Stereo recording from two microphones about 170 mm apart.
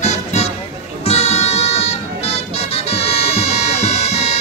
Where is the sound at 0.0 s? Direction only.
40° left (ahead or behind).